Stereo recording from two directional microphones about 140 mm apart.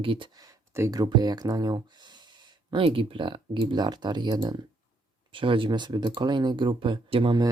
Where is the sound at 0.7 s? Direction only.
25° right (ahead or behind).